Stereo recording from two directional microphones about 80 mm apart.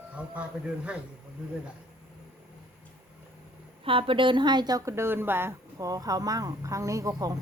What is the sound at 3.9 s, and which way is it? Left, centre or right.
Speech, right.